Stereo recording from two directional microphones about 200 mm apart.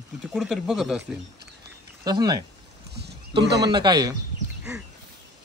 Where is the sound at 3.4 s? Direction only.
55° right (ahead or behind).